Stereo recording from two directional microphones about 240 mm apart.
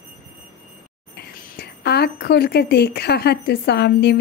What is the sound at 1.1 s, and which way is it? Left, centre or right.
A woman's voice, left.